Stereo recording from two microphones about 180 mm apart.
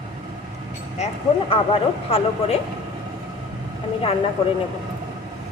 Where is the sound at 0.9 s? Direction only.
35° left (ahead or behind).